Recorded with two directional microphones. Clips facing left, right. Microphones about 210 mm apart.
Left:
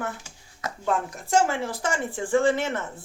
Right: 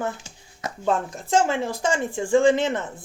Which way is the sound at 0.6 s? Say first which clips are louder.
Right 3 dB; 25° right (ahead or behind).